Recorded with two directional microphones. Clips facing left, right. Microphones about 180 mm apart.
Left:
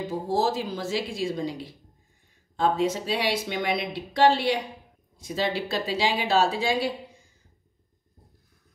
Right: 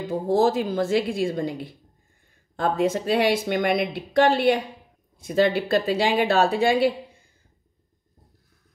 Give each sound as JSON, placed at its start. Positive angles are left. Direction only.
{"t": 0.3, "sound": "a woman's voice", "side_deg": -55}